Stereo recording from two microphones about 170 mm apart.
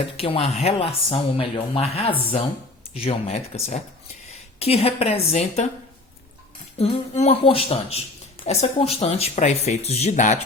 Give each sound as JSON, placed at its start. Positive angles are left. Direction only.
{"t": 0.2, "sound": "speech", "side_deg": 35}
{"t": 6.7, "sound": "speech", "side_deg": 40}